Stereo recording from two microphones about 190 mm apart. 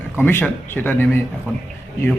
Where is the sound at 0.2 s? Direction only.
10° left (ahead or behind).